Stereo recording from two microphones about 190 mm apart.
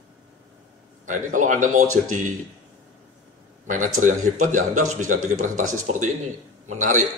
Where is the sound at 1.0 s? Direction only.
45° right (ahead or behind).